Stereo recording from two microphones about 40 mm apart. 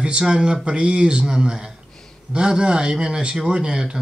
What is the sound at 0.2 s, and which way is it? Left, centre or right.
Speech, right.